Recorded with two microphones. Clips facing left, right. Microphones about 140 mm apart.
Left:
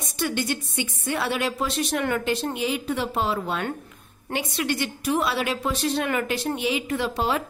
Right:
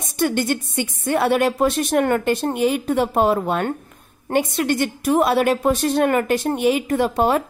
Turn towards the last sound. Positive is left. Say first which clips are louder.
# right 7 dB
turn(degrees=-50)  # may be behind; listen again after turning